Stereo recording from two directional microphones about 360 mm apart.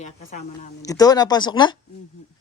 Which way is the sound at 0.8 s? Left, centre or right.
Centre.